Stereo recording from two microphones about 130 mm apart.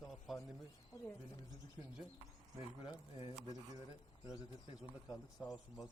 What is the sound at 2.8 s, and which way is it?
Speech, 40° left (ahead or behind).